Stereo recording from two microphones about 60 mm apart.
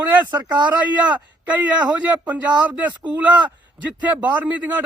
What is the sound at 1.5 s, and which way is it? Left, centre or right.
A man's voice, right.